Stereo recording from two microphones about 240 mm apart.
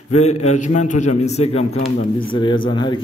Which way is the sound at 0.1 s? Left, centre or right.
Left.